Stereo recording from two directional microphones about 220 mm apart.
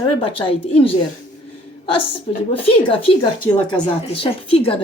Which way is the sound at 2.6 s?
25° left (ahead or behind).